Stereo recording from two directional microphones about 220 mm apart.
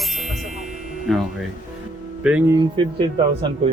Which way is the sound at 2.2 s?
5° right (ahead or behind).